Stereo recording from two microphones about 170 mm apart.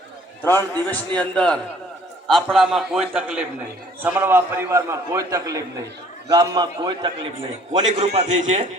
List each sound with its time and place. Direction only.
0.4 s a man's voice: 10° left (ahead or behind); by 7.1 s 25° right (ahead or behind)
7.9 s a man's voice: 40° right (ahead or behind)